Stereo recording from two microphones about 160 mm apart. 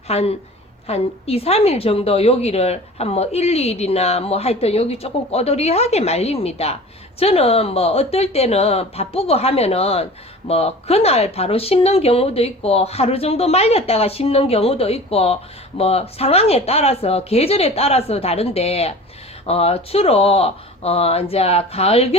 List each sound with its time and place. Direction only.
0.1 s a woman's voice: 40° left (ahead or behind)